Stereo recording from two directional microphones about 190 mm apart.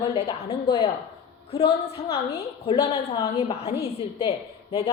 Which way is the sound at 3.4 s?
30° left (ahead or behind).